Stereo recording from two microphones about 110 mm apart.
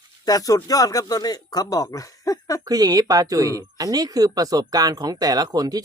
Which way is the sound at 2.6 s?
35° right (ahead or behind).